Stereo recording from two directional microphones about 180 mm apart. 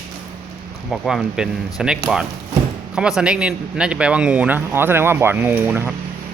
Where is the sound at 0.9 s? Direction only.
Centre (ahead or behind).